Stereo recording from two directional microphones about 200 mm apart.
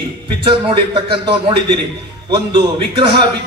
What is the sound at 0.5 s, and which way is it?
Speech, 25° right (ahead or behind).